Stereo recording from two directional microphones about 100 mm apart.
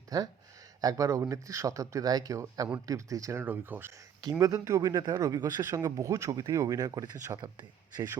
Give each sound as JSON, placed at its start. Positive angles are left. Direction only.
{"t": 0.1, "sound": "speech", "side_deg": -40}
{"t": 3.4, "sound": "speech", "side_deg": -20}
{"t": 4.2, "sound": "speech", "side_deg": -35}
{"t": 5.8, "sound": "speech", "side_deg": -30}